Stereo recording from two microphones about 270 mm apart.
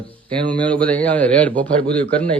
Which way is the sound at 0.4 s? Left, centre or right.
Centre.